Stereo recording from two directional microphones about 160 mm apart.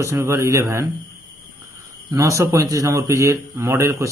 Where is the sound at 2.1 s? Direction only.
20° right (ahead or behind).